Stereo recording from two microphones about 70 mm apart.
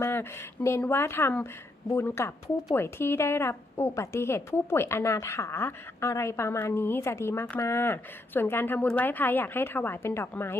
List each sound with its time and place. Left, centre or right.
0.0 s a woman's voice: left